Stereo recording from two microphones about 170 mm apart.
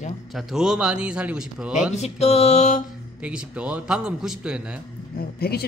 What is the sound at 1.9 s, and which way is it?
Mantra, 40° left (ahead or behind).